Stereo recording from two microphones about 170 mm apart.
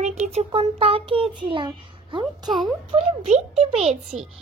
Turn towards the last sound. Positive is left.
turn(degrees=-40)  # may be behind; listen again after turning